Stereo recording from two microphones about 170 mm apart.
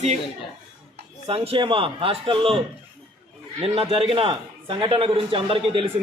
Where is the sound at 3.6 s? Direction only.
35° right (ahead or behind).